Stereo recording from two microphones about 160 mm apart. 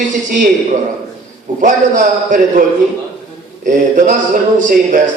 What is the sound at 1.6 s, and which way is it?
Speech, 55° right (ahead or behind).